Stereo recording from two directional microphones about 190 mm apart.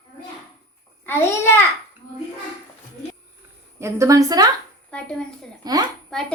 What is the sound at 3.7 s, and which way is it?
Speech, 15° right (ahead or behind).